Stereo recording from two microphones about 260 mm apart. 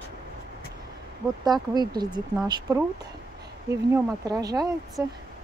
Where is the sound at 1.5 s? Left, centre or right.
Centre.